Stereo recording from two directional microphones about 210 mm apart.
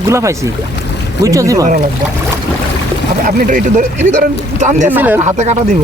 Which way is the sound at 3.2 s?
40° right (ahead or behind).